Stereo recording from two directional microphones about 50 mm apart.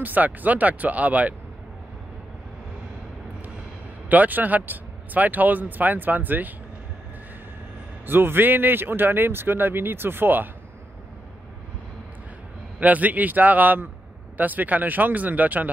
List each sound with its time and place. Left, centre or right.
0.0 s speech: right
4.1 s speech: right
8.1 s speech: right
12.8 s speech: right